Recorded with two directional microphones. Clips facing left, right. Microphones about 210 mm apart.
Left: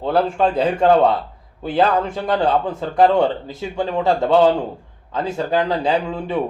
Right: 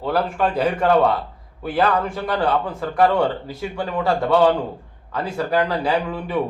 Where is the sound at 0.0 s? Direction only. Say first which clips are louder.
Left 3 dB; 25° left (ahead or behind).